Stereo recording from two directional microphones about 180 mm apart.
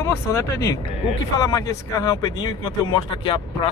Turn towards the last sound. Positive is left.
turn(degrees=25)  # may be behind; listen again after turning